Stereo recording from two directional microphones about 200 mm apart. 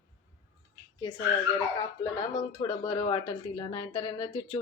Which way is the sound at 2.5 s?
25° left (ahead or behind).